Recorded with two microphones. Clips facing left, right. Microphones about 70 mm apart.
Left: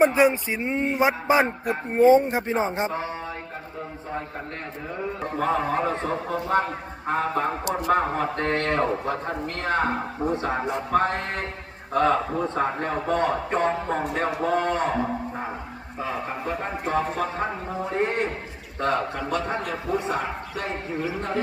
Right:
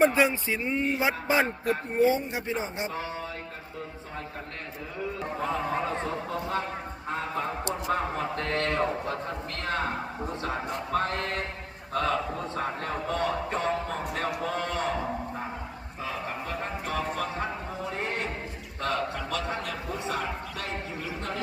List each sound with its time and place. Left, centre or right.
0.0 s speech: centre
0.6 s a man's voice: left
0.9 s speech: left
2.0 s a man's voice: left
5.4 s a man's voice: left
7.9 s a man's voice: left
8.8 s a man's voice: left
10.9 s a man's voice: left
16.0 s speech: left
19.6 s speech: centre